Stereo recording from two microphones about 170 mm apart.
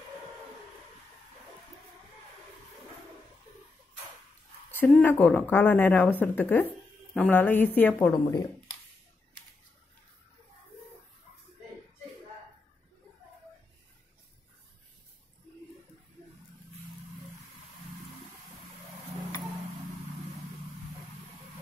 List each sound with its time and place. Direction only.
4.6 s a woman's voice: 10° left (ahead or behind)